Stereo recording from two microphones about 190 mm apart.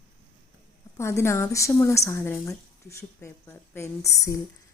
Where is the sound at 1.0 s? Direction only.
15° left (ahead or behind).